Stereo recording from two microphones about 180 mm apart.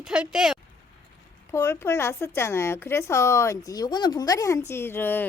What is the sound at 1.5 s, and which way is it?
Speech, 15° left (ahead or behind).